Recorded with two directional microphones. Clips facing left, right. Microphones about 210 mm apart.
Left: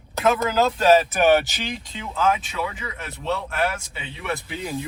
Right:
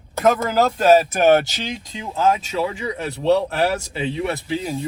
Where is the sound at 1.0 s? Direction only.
45° right (ahead or behind).